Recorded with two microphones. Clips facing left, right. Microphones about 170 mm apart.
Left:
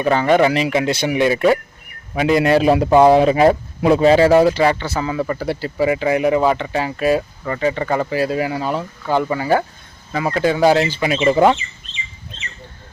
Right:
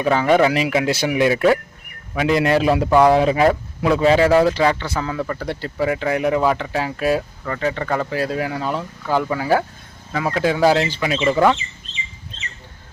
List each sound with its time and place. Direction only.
0.0 s speech: centre (ahead or behind)
2.4 s a man's voice: 35° left (ahead or behind)
4.4 s speech: 5° left (ahead or behind)
11.2 s speech: 20° left (ahead or behind)